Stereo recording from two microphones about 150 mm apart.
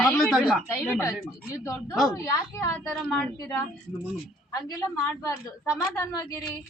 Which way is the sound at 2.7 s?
5° left (ahead or behind).